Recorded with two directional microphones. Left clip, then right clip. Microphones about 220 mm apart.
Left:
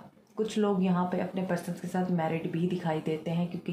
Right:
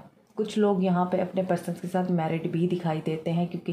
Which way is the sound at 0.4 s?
45° right (ahead or behind).